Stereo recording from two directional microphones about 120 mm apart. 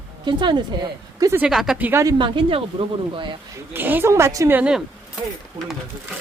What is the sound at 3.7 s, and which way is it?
Speech, 15° right (ahead or behind).